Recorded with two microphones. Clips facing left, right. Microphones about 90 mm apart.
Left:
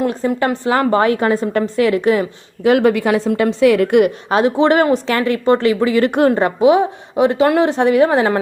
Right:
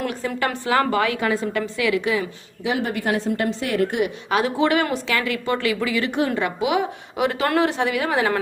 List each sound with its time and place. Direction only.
0.0 s a woman's voice: 30° left (ahead or behind)
2.6 s a woman's voice: 80° left
4.3 s a woman's voice: 30° left (ahead or behind)
6.1 s a woman's voice: 55° left (ahead or behind)
6.3 s a woman's voice: 35° left (ahead or behind)
7.7 s a woman's voice: 35° left (ahead or behind)